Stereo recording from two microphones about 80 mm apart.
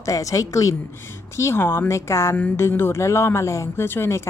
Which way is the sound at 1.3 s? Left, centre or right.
Left.